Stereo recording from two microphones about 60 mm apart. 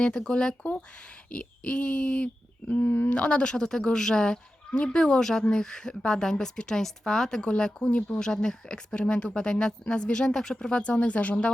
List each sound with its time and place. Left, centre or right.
0.0 s speech: centre
0.6 s speech: left
2.7 s speech: left
3.1 s speech: centre